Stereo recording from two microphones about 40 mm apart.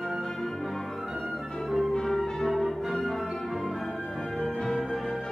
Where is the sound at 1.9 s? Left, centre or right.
Centre.